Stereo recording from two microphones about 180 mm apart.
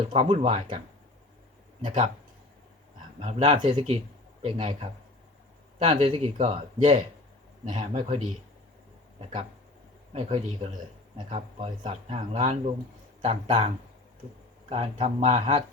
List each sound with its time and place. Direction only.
0.0 s speech: 30° right (ahead or behind)
3.2 s speech: 35° right (ahead or behind)
10.1 s speech: 35° right (ahead or behind)
14.7 s speech: 35° right (ahead or behind)